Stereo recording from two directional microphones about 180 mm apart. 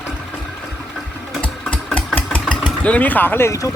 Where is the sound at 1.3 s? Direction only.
5° left (ahead or behind).